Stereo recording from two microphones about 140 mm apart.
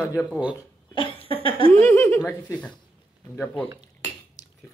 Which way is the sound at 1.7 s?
20° left (ahead or behind).